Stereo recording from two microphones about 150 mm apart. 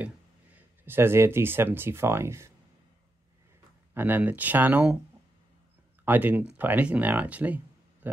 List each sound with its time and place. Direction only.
0.0 s speech: 10° right (ahead or behind)
3.9 s speech: 10° right (ahead or behind)
6.0 s speech: 10° right (ahead or behind)